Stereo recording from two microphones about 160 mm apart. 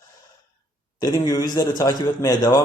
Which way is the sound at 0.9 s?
25° left (ahead or behind).